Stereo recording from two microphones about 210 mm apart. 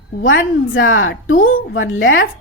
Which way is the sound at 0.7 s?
70° left (ahead or behind).